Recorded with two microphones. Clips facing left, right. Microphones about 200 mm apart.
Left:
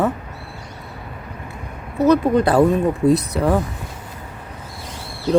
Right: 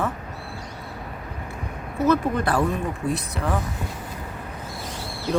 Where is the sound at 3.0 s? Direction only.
65° left (ahead or behind).